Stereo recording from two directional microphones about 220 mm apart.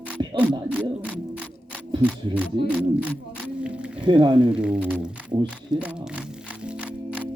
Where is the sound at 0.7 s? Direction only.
5° right (ahead or behind).